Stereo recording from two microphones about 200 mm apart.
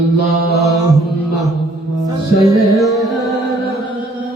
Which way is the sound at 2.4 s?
15° right (ahead or behind).